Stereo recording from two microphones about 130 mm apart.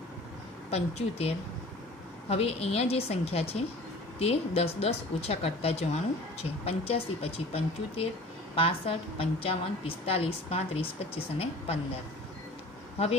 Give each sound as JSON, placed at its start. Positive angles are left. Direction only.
{"t": 0.7, "sound": "a woman's voice", "side_deg": 55}